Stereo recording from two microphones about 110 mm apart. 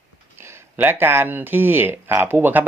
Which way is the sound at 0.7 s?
20° right (ahead or behind).